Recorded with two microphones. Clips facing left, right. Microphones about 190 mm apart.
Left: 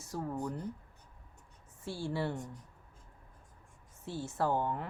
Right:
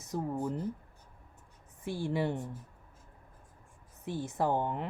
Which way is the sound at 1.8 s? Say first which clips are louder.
Right 4 dB; 15° right (ahead or behind).